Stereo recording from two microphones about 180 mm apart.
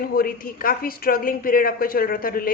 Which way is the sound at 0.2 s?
50° left (ahead or behind).